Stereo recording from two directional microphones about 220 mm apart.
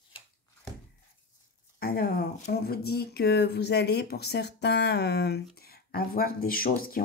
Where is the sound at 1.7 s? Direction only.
45° left (ahead or behind).